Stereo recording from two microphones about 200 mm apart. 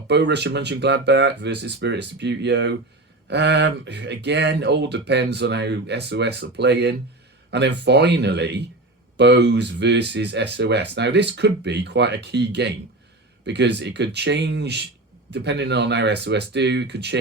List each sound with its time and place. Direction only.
0.1 s speech: 60° right (ahead or behind)